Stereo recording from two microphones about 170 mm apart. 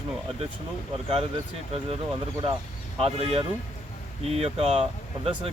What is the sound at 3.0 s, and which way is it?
Speech, 35° right (ahead or behind).